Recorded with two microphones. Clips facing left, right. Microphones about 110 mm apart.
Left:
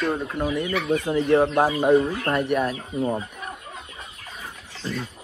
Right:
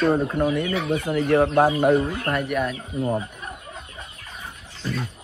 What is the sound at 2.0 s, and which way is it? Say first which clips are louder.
Speech: left 2 dB; 25° left (ahead or behind).